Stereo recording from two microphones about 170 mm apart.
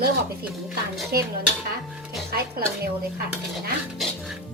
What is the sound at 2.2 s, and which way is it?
Speech, 65° right (ahead or behind).